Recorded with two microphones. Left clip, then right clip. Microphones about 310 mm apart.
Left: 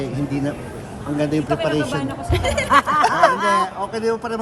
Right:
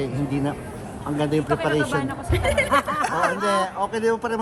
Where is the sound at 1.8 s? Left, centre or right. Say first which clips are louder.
Left 1 dB; centre.